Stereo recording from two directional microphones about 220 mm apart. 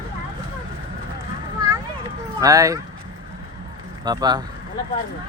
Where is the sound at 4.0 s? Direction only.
20° right (ahead or behind).